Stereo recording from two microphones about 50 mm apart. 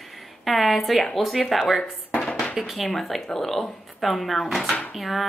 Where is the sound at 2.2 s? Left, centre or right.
Left.